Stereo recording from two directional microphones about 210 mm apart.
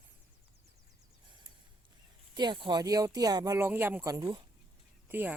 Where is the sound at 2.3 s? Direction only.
20° right (ahead or behind).